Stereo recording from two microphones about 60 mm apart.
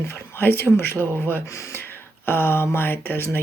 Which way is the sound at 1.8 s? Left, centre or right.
Left.